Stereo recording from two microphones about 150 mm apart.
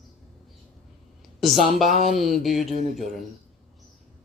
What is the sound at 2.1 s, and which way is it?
Speech, centre (ahead or behind).